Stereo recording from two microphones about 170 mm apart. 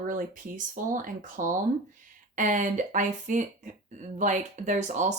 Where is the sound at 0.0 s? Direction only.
50° right (ahead or behind).